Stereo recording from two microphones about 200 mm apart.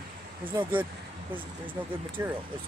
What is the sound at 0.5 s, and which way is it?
Speech, 25° right (ahead or behind).